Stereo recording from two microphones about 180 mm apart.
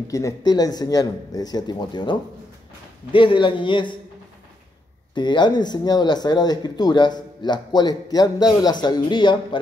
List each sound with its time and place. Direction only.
0.1 s speech: 20° left (ahead or behind)
5.1 s speech: 25° left (ahead or behind)